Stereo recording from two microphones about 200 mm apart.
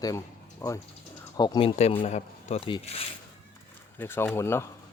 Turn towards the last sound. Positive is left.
turn(degrees=15)  # may be behind; listen again after turning